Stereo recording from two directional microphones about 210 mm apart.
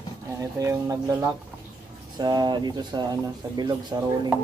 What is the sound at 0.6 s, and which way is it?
Speech, 15° right (ahead or behind).